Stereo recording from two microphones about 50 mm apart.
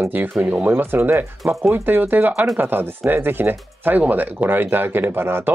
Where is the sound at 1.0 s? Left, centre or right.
Right.